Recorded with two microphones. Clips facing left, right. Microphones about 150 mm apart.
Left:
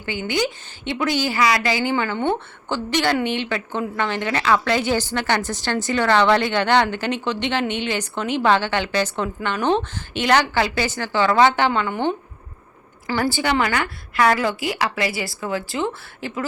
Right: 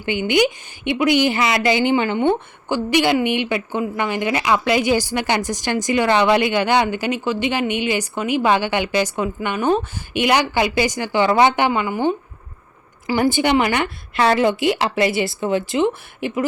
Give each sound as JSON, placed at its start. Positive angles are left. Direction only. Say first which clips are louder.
{"t": 0.0, "sound": "a woman's voice", "louder": "right 6 dB", "side_deg": -20}